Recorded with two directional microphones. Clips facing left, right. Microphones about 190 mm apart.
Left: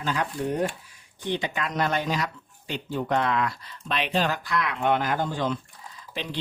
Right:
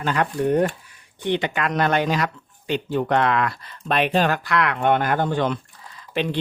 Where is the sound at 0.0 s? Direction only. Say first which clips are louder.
Right 6 dB; 65° right (ahead or behind).